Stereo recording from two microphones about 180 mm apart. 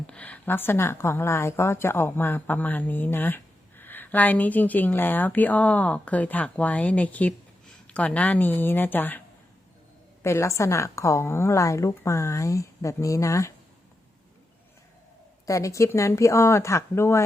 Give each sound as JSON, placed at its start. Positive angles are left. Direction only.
{"t": 0.1, "sound": "a woman's voice", "side_deg": 10}
{"t": 10.2, "sound": "a woman's voice", "side_deg": 15}
{"t": 15.4, "sound": "a woman's voice", "side_deg": 15}